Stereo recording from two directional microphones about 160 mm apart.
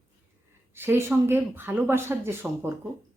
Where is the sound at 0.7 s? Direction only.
15° right (ahead or behind).